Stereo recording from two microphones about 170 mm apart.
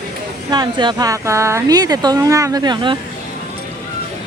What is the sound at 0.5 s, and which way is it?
Speech, 25° right (ahead or behind).